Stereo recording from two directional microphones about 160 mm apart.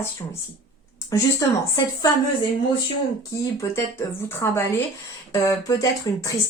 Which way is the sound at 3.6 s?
15° left (ahead or behind).